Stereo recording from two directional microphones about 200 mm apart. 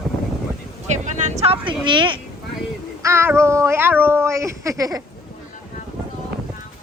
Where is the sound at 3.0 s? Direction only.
15° right (ahead or behind).